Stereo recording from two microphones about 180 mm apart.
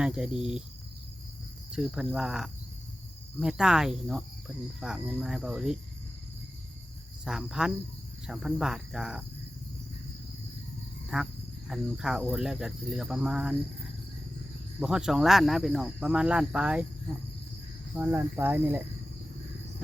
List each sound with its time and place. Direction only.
0.0 s speech: 5° right (ahead or behind)
1.7 s speech: 5° right (ahead or behind)
7.3 s speech: 5° right (ahead or behind)
11.1 s speech: 5° right (ahead or behind)
14.8 s speech: 5° right (ahead or behind)
17.9 s cricket: 10° right (ahead or behind)